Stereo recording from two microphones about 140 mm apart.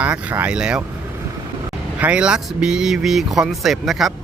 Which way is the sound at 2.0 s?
10° right (ahead or behind).